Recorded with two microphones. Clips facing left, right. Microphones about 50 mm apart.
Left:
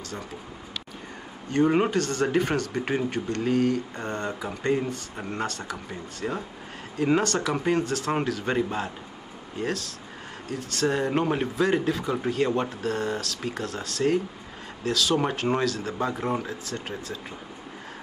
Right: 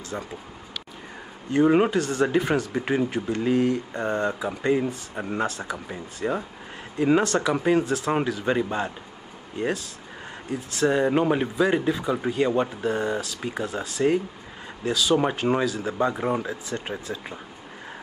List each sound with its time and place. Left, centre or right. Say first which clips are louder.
1.5 s speech: right 3 dB; centre
10.5 s speech: right 3 dB; centre
16.7 s speech: right 4 dB; right